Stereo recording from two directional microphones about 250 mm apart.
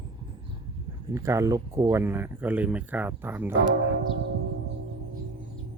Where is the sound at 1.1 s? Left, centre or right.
Centre.